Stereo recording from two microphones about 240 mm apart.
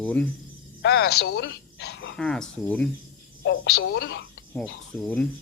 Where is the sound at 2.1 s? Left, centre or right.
Centre.